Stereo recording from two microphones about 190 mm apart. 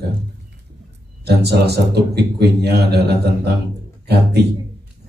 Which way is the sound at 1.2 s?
60° right (ahead or behind).